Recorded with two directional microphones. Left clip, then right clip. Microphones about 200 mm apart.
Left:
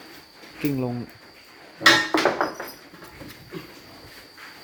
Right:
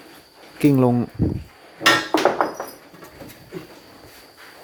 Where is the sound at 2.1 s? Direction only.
30° right (ahead or behind).